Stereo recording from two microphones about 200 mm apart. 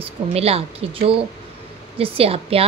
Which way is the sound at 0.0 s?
30° right (ahead or behind).